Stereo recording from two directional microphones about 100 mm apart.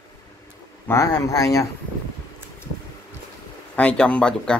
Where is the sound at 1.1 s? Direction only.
35° left (ahead or behind).